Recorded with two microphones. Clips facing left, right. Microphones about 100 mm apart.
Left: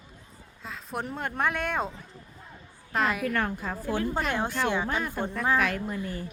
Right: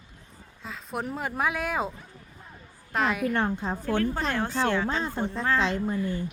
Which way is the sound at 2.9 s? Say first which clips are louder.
Right 1 dB; centre (ahead or behind).